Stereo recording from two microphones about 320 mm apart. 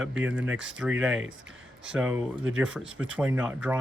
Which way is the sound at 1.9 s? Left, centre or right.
Centre.